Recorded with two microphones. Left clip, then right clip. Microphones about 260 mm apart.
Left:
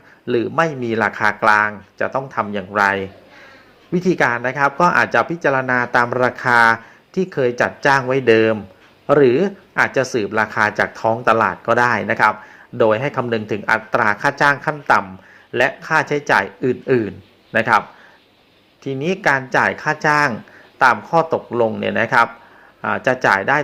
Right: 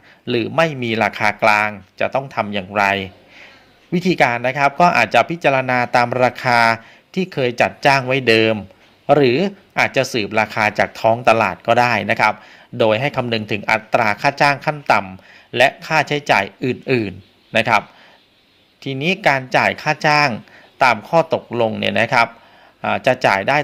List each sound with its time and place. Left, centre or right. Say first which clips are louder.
0.3 s speech: even; right